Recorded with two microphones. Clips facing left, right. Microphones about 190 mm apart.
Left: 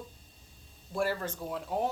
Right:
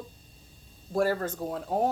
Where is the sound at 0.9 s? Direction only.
45° right (ahead or behind).